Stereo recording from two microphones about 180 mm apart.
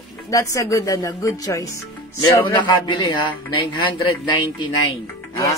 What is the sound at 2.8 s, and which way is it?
Speech, 25° left (ahead or behind).